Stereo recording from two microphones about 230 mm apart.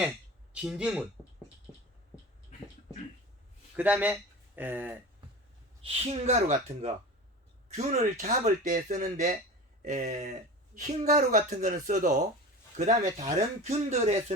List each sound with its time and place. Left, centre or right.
0.5 s speech: centre
3.8 s speech: centre
5.8 s speech: right